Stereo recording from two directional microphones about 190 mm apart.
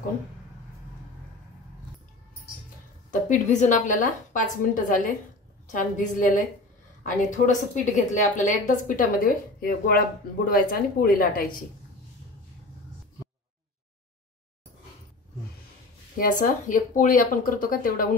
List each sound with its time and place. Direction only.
3.1 s a woman's voice: 40° left (ahead or behind)
16.2 s a woman's voice: 45° left (ahead or behind)